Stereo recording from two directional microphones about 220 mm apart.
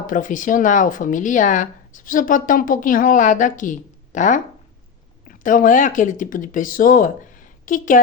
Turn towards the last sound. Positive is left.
turn(degrees=35)  # may be behind; listen again after turning